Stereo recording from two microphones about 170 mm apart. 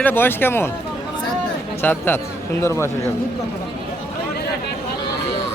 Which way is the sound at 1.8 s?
10° left (ahead or behind).